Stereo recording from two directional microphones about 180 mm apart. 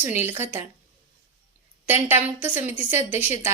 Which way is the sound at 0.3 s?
15° right (ahead or behind).